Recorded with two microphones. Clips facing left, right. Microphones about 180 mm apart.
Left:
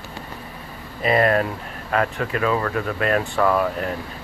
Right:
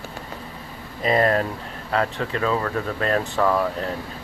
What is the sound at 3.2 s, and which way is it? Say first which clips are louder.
Speech: left 1 dB; 5° right (ahead or behind).